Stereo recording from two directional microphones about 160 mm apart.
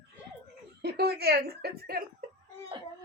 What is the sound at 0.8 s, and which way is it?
Speech, 80° right.